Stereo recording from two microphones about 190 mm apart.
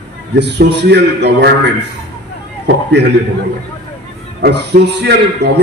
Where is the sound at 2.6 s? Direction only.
60° right (ahead or behind).